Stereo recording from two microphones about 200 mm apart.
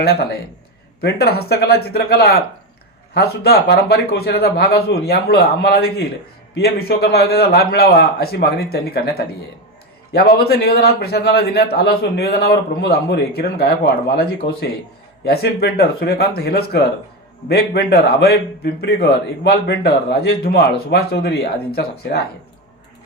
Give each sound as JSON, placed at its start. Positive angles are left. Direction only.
{"t": 0.0, "sound": "a man's voice", "side_deg": 50}